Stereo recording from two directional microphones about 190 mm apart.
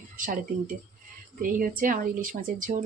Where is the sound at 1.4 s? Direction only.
50° right (ahead or behind).